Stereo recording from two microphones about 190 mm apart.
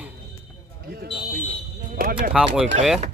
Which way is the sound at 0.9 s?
55° right (ahead or behind).